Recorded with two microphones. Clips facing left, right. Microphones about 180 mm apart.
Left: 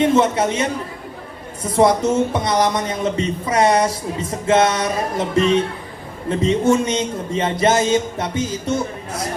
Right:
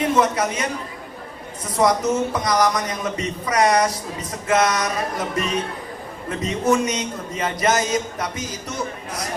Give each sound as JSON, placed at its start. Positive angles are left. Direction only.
{"t": 0.0, "sound": "speech", "side_deg": 25}